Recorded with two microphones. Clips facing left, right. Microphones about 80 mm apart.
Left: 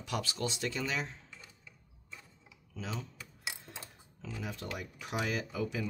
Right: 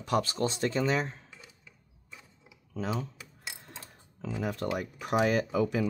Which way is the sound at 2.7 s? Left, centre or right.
Right.